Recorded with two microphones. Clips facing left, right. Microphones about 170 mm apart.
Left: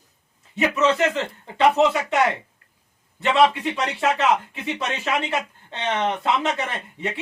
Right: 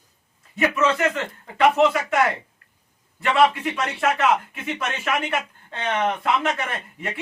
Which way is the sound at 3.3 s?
30° left (ahead or behind).